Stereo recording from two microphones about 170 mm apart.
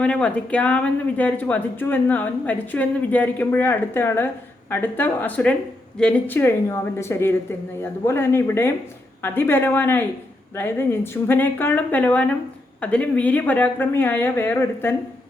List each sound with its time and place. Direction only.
0.0 s a woman's voice: 5° left (ahead or behind)